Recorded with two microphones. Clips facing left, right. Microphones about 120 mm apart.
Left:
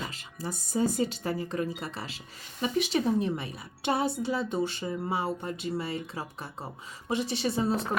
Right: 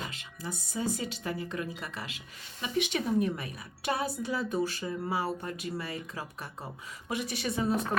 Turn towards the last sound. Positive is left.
turn(degrees=30)  # may be behind; listen again after turning